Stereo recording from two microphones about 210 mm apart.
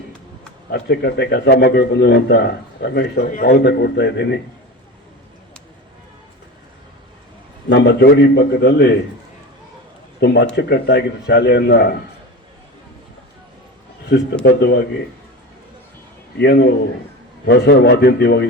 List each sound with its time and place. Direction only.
0.7 s a man's voice: 50° left (ahead or behind)
7.7 s a man's voice: 55° left (ahead or behind)
10.2 s a man's voice: 50° left (ahead or behind)
14.4 s a man's voice: 50° left (ahead or behind)
16.4 s a man's voice: 55° left (ahead or behind)